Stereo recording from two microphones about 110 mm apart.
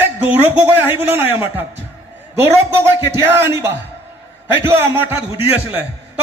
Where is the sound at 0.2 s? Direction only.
20° right (ahead or behind).